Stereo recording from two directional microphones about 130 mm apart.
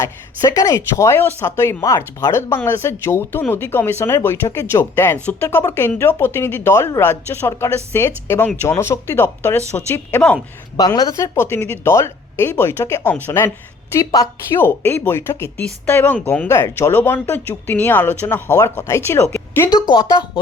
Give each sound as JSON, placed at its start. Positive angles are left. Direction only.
{"t": 0.0, "sound": "speech", "side_deg": 25}
{"t": 10.8, "sound": "speech", "side_deg": 30}
{"t": 19.7, "sound": "speech", "side_deg": 30}